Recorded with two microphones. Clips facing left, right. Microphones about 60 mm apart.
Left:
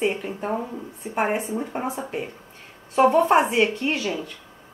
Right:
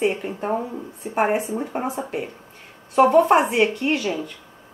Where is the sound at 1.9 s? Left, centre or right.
Centre.